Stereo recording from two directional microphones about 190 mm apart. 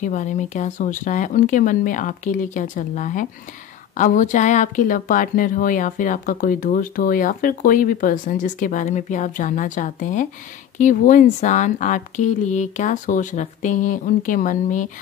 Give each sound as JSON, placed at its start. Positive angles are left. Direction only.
{"t": 0.0, "sound": "speech", "side_deg": 40}